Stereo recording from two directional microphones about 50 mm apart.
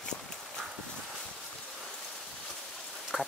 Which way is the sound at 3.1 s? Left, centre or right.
Centre.